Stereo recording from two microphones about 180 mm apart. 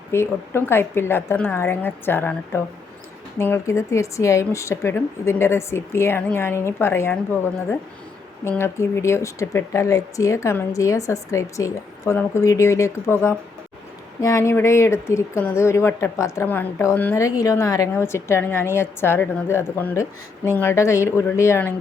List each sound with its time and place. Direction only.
0.1 s speech: 15° left (ahead or behind)
8.4 s speech: 15° left (ahead or behind)